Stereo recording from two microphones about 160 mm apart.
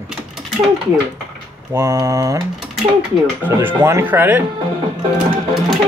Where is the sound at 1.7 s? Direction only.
20° right (ahead or behind).